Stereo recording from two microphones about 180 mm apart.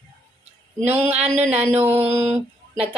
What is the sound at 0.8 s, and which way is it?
Speech, 35° right (ahead or behind).